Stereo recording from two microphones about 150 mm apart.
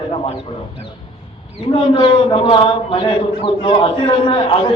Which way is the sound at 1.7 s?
35° left (ahead or behind).